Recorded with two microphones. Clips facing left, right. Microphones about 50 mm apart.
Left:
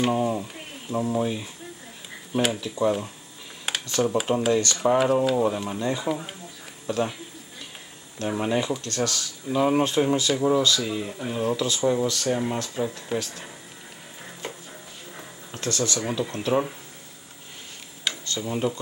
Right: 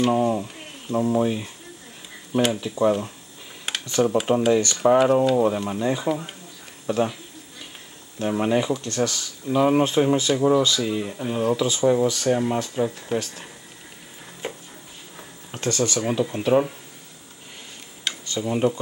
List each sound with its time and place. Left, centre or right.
0.1 s speech: centre
3.7 s a sound: centre
4.0 s speech: centre
4.9 s speech: centre
8.2 s speech: centre
14.4 s music: centre
15.5 s speech: right
16.1 s speech: centre
18.0 s tick-tock: centre